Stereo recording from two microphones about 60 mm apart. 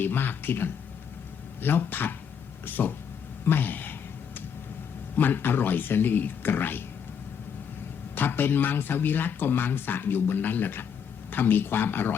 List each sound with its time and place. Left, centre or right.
0.0 s speech: left
5.1 s speech: left
8.1 s speech: left